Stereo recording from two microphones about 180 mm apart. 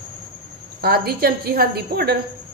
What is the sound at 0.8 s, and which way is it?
A woman's voice, 60° right (ahead or behind).